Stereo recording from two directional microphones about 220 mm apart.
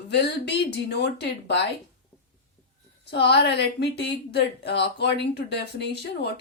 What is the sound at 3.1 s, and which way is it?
A woman's voice, 50° left (ahead or behind).